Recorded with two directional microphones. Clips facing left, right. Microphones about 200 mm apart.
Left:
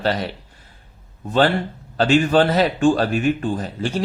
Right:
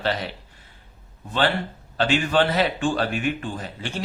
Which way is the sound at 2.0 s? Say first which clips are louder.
Left 5 dB; 40° left (ahead or behind).